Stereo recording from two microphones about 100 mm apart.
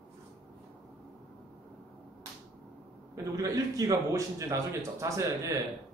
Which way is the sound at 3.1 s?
35° right (ahead or behind).